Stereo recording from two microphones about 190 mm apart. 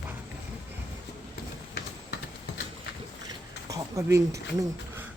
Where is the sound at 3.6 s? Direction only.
15° right (ahead or behind).